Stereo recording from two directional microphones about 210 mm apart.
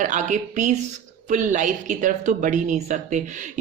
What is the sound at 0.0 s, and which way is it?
Speech, 35° right (ahead or behind).